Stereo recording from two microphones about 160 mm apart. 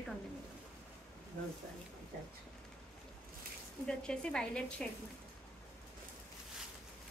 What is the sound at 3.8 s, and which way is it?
A woman's voice, 5° left (ahead or behind).